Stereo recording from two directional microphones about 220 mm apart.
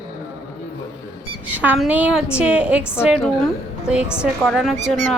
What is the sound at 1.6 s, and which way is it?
A woman's voice, 5° right (ahead or behind).